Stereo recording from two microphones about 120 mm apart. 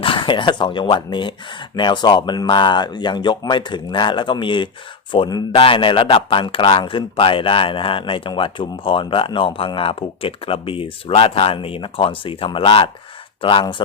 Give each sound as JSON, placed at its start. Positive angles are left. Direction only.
{"t": 0.0, "sound": "a man's voice", "side_deg": 45}